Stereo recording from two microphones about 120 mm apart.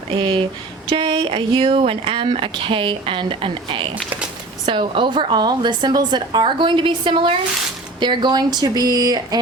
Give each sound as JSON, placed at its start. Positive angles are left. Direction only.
{"t": 0.1, "sound": "a woman's voice", "side_deg": -45}